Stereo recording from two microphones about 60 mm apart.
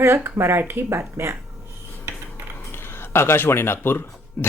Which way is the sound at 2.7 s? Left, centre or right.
Left.